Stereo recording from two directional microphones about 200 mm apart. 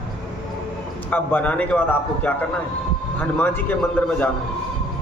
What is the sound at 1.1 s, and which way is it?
A man's voice, 10° left (ahead or behind).